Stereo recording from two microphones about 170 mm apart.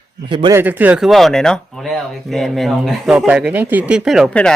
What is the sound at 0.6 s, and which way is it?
Speech, 10° right (ahead or behind).